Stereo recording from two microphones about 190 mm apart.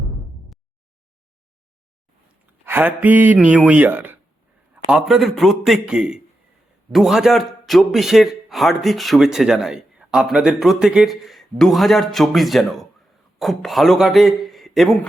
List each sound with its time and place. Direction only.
2.6 s mantra: 10° right (ahead or behind)
4.7 s a man's voice: 5° right (ahead or behind)